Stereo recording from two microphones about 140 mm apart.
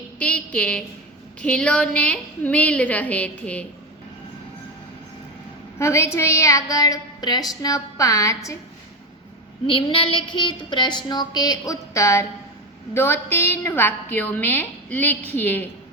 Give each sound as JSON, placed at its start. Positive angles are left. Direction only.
{"t": 0.2, "sound": "a woman's voice", "side_deg": 10}
{"t": 5.8, "sound": "a woman's voice", "side_deg": 20}
{"t": 9.6, "sound": "child singing", "side_deg": 40}
{"t": 12.9, "sound": "a woman's voice", "side_deg": 15}